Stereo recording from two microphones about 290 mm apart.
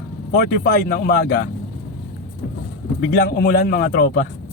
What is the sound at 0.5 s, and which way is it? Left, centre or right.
Speech, left.